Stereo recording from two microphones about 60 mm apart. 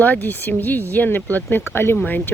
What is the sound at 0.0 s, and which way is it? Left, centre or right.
Speech, left.